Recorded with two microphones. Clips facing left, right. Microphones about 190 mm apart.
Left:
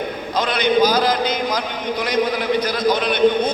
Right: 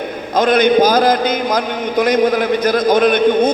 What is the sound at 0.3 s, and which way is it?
A man's voice, 50° right (ahead or behind).